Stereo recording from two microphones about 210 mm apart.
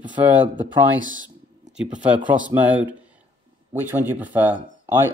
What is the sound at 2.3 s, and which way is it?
Speech, 5° right (ahead or behind).